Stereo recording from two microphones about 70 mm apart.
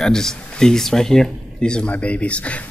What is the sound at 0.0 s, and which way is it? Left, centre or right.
Speech, centre.